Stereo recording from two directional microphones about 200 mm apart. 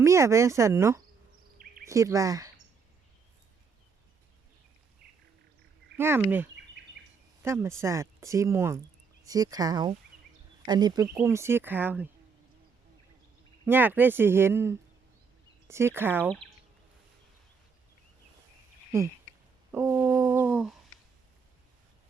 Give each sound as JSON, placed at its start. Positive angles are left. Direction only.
{"t": 0.0, "sound": "speech", "side_deg": -15}
{"t": 6.0, "sound": "speech", "side_deg": -10}
{"t": 13.7, "sound": "speech", "side_deg": -10}
{"t": 18.9, "sound": "speech", "side_deg": -10}